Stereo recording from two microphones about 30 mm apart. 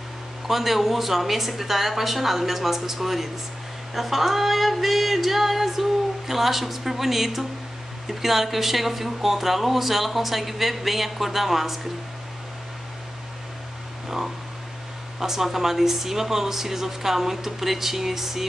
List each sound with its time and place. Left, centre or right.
0.5 s speech: centre
3.9 s female singing: centre
8.1 s speech: centre
14.0 s a sound: centre
15.1 s speech: centre